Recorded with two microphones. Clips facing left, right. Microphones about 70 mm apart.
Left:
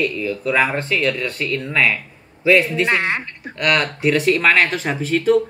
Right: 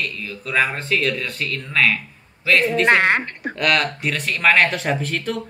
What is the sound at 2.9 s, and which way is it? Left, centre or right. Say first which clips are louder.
Speech: right 4 dB; right.